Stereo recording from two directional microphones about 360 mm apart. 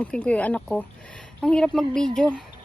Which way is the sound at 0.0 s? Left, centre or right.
Centre.